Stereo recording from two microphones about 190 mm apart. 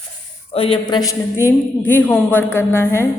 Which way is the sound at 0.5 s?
30° left (ahead or behind).